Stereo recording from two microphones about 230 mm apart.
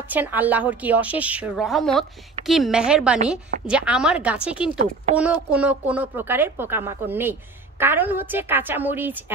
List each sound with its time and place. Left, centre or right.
0.1 s a woman's voice: centre